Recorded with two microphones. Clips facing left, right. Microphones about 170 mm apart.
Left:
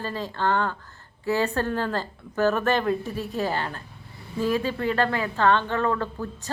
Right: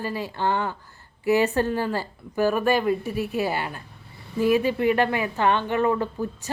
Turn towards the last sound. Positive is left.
turn(degrees=-15)  # may be behind; listen again after turning